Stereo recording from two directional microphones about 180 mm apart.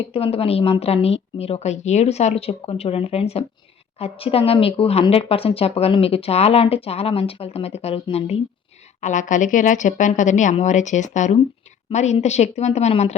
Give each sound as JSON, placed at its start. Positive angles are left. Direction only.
{"t": 0.1, "sound": "a woman's voice", "side_deg": 30}